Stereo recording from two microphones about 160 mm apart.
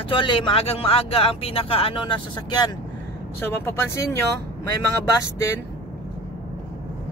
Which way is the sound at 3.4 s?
15° left (ahead or behind).